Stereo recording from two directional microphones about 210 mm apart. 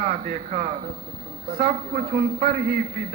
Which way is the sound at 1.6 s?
40° right (ahead or behind).